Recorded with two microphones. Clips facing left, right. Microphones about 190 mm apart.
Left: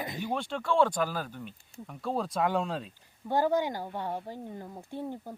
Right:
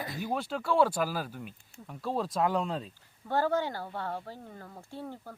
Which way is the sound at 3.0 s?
15° left (ahead or behind).